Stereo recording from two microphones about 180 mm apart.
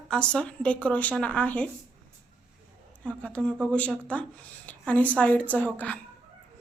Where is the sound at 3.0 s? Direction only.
5° left (ahead or behind).